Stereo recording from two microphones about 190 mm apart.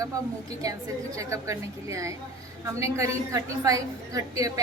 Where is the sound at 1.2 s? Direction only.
15° right (ahead or behind).